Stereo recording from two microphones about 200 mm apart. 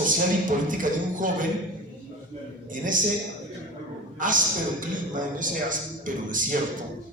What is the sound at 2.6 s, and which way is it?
Speech, 40° right (ahead or behind).